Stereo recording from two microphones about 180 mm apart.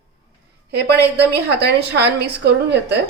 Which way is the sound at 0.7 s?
65° right (ahead or behind).